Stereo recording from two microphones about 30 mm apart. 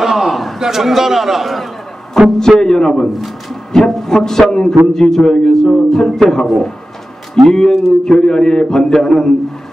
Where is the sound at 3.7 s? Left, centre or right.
Centre.